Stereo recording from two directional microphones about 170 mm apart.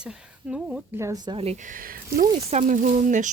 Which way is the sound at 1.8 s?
55° right (ahead or behind).